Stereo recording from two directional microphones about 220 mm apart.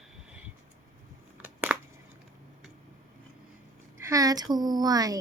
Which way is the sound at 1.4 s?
5° right (ahead or behind).